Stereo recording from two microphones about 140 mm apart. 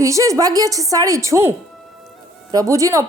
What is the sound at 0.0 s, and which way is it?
Speech, 25° right (ahead or behind).